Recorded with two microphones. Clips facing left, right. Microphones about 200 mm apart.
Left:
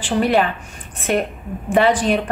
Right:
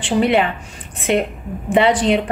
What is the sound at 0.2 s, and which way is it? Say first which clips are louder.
Speech: right 1 dB; 20° right (ahead or behind).